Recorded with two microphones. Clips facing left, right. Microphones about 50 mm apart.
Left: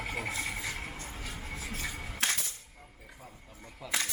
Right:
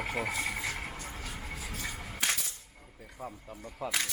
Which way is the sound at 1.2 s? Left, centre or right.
Centre.